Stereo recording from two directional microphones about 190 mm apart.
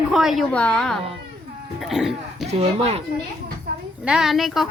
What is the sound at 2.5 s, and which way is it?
Speech, 35° right (ahead or behind).